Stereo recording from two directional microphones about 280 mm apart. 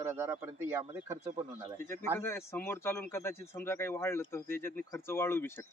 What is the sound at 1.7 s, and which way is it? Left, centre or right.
Speech, centre.